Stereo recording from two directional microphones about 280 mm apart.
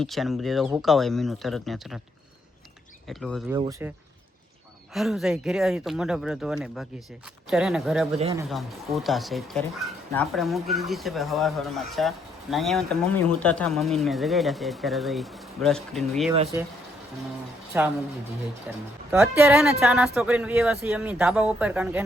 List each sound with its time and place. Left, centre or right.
0.0 s speech: centre
3.1 s speech: centre
4.9 s speech: centre
8.2 s speech: centre
8.4 s speech: centre
17.7 s speech: centre